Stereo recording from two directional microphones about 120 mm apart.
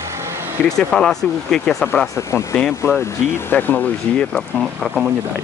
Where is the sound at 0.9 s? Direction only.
5° left (ahead or behind).